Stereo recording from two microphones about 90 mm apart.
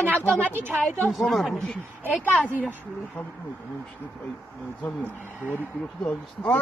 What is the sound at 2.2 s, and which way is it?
Speech, 15° left (ahead or behind).